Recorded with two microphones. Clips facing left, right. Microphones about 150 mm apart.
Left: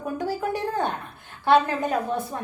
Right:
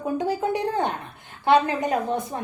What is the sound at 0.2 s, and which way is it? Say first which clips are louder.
A woman's voice: right 1 dB; 20° right (ahead or behind).